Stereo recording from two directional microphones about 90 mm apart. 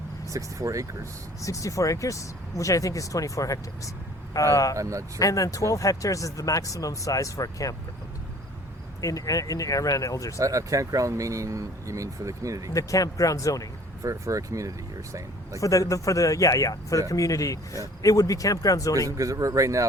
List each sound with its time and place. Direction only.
0.3 s speech: 40° right (ahead or behind)
1.4 s speech: 35° left (ahead or behind)
4.8 s speech: 35° right (ahead or behind)
5.2 s speech: 40° left (ahead or behind)
9.0 s speech: 40° left (ahead or behind)
10.3 s speech: 35° right (ahead or behind)
12.7 s speech: 40° left (ahead or behind)
14.0 s speech: 35° right (ahead or behind)
15.6 s speech: 35° left (ahead or behind)
19.1 s speech: 40° right (ahead or behind)